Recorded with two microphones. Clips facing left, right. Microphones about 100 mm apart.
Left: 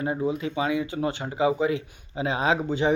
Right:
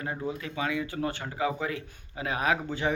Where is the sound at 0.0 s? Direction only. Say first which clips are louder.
Left 7 dB; 20° left (ahead or behind).